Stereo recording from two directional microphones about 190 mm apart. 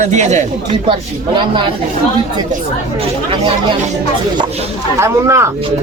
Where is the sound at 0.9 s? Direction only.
25° right (ahead or behind).